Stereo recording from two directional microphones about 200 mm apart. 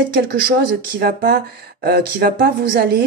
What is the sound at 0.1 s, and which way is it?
Speech, 50° right (ahead or behind).